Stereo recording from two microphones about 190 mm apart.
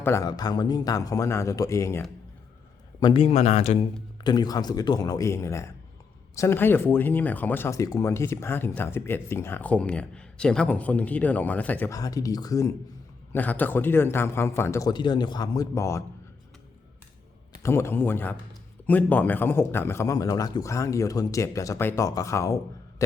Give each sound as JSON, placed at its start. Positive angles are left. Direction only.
{"t": 0.0, "sound": "speech", "side_deg": 15}
{"t": 3.0, "sound": "a man's voice", "side_deg": 25}
{"t": 4.2, "sound": "speech", "side_deg": 20}
{"t": 17.6, "sound": "speech", "side_deg": 15}